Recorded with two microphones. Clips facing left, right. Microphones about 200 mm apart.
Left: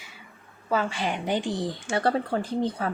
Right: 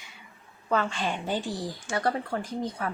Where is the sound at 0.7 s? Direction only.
10° left (ahead or behind).